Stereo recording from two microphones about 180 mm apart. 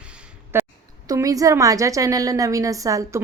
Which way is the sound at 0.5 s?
10° right (ahead or behind).